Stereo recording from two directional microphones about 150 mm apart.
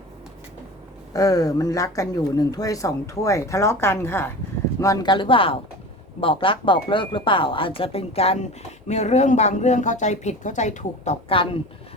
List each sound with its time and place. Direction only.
1.1 s speech: 25° left (ahead or behind)
4.8 s speech: 25° left (ahead or behind)